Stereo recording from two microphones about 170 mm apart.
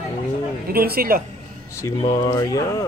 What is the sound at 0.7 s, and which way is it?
Speech, 60° right (ahead or behind).